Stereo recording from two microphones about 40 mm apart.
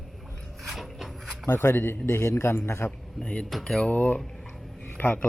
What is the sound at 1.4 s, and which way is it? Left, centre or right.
A man's voice, left.